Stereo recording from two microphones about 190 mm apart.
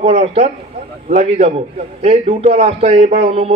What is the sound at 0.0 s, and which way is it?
A man's voice, 35° right (ahead or behind).